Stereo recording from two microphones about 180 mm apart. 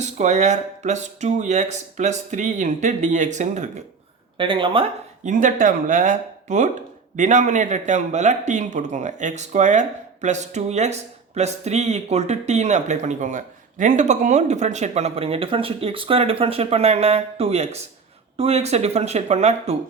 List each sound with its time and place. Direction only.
0.0 s speech: 40° right (ahead or behind)
4.4 s speech: 25° right (ahead or behind)
5.2 s speech: 45° right (ahead or behind)